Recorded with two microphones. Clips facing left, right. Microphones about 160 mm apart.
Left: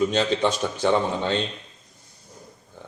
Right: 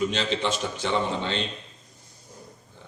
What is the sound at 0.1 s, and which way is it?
A man's voice, 45° left (ahead or behind).